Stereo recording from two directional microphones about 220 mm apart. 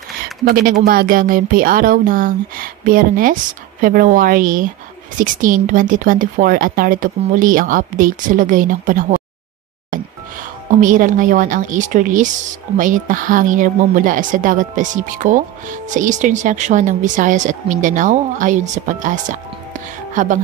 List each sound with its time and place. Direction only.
0.5 s speech: 40° right (ahead or behind)
10.8 s speech: 35° right (ahead or behind)
19.7 s music: 35° right (ahead or behind)